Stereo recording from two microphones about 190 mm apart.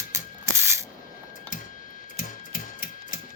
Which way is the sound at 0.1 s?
15° right (ahead or behind).